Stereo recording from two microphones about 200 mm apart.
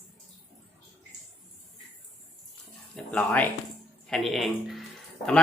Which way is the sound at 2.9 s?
5° left (ahead or behind).